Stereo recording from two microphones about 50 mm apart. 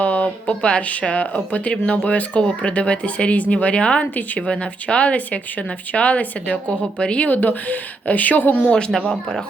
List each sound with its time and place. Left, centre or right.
0.0 s speech: left
7.3 s a woman's voice: left